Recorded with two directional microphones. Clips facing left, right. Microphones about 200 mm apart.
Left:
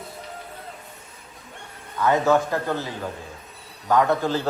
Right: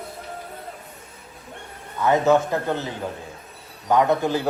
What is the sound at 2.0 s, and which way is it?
Speech, 20° right (ahead or behind).